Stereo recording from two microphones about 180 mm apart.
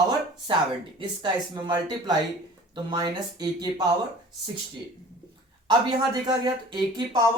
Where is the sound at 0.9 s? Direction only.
25° right (ahead or behind).